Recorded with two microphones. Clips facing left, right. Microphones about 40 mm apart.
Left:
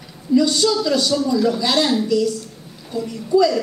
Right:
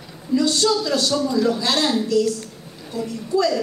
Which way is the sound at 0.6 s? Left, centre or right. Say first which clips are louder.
Left 2 dB; centre.